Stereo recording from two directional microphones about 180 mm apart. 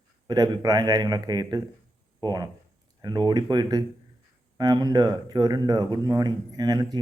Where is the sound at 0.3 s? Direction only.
20° right (ahead or behind).